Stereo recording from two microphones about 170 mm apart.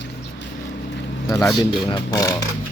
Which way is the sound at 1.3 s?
20° left (ahead or behind).